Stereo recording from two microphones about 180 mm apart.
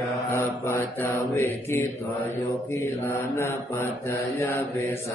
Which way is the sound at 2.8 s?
15° left (ahead or behind).